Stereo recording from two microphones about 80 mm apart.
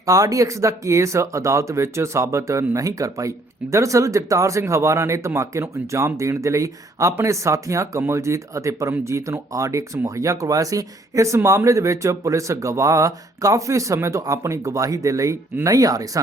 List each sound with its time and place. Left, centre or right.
0.0 s speech: right